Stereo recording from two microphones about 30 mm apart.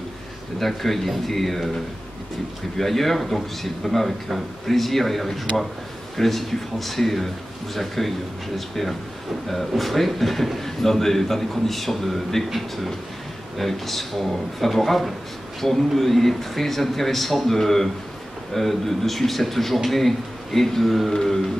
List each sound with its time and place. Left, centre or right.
0.6 s a man's voice: centre
2.8 s a man's voice: centre
21.1 s vehicle: centre